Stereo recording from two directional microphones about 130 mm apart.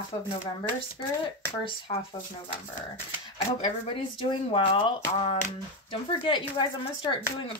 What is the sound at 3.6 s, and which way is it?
Speech, 40° left (ahead or behind).